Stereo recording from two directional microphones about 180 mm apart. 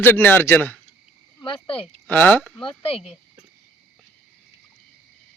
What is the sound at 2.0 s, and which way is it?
Speech, 10° left (ahead or behind).